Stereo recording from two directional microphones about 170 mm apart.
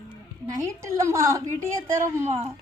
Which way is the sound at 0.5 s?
20° right (ahead or behind).